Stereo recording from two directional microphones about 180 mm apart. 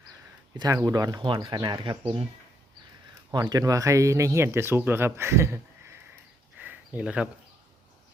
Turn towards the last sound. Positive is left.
turn(degrees=-5)  # may be behind; listen again after turning